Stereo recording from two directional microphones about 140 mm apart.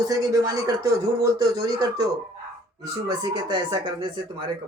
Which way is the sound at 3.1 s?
30° right (ahead or behind).